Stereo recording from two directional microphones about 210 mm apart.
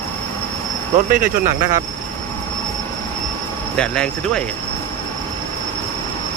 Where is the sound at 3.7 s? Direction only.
5° left (ahead or behind).